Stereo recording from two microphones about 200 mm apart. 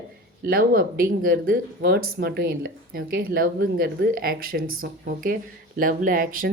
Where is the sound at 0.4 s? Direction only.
50° right (ahead or behind).